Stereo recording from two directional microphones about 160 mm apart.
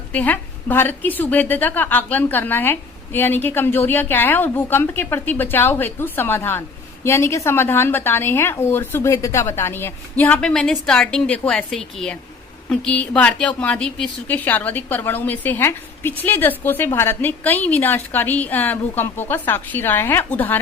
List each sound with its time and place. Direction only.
0.1 s a woman's voice: 10° left (ahead or behind)